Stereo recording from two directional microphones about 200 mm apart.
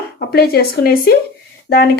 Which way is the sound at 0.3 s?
50° left (ahead or behind).